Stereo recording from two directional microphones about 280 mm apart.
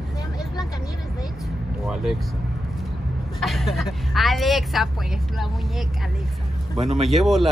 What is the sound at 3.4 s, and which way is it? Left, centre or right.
Speech, centre.